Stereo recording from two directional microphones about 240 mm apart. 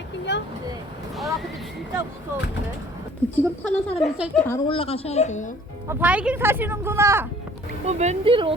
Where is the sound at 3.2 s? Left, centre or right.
Centre.